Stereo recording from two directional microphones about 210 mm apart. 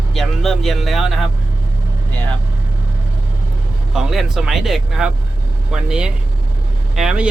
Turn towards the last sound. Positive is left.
turn(degrees=-5)  # may be behind; listen again after turning